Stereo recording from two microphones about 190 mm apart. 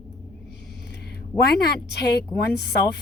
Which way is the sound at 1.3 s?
60° left (ahead or behind).